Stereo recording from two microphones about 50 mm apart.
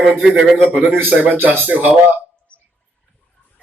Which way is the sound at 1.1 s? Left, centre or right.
Right.